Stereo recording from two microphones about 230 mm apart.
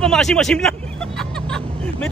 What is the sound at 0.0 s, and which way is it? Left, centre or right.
Speech, centre.